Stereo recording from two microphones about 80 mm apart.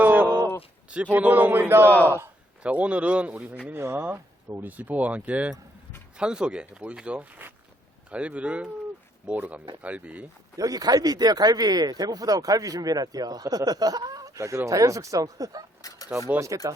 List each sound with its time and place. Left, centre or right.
0.0 s a sound: right
1.1 s speech: centre
2.6 s speech: centre
3.7 s speech: right
10.6 s speech: right
15.8 s speech: left
16.5 s speech: right